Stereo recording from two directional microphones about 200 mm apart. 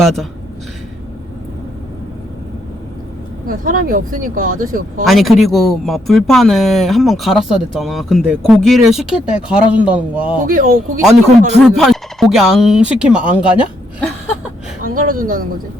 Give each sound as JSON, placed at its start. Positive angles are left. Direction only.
{"t": 0.0, "sound": "speech", "side_deg": 0}
{"t": 3.4, "sound": "speech", "side_deg": -45}
{"t": 5.0, "sound": "speech", "side_deg": 0}
{"t": 10.4, "sound": "speech", "side_deg": -45}
{"t": 11.6, "sound": "speech", "side_deg": 0}
{"t": 14.8, "sound": "speech", "side_deg": -45}